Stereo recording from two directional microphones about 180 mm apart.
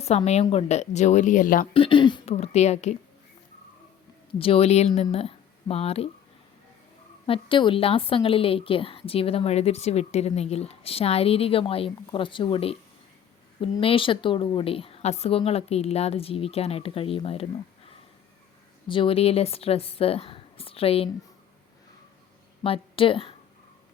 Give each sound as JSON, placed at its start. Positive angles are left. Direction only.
{"t": 0.0, "sound": "a woman's voice", "side_deg": 35}
{"t": 1.7, "sound": "a woman's voice", "side_deg": 30}
{"t": 4.3, "sound": "speech", "side_deg": 30}
{"t": 7.3, "sound": "a woman's voice", "side_deg": 30}
{"t": 18.9, "sound": "a woman's voice", "side_deg": 30}
{"t": 22.6, "sound": "a woman's voice", "side_deg": 30}